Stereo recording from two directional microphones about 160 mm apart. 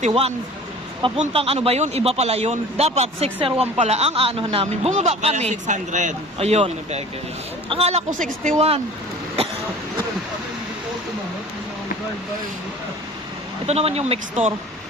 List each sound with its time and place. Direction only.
0.0 s speech: 40° right (ahead or behind)
13.7 s speech: 40° right (ahead or behind)